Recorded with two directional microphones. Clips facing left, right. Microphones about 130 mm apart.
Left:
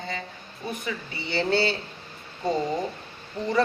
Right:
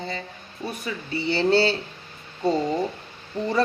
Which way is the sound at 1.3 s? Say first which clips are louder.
Right 4 dB; 30° right (ahead or behind).